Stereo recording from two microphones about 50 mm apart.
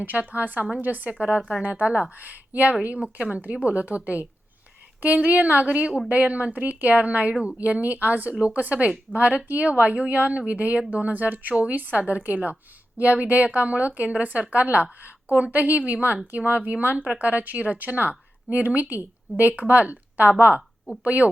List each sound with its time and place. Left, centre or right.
0.0 s a woman's voice: right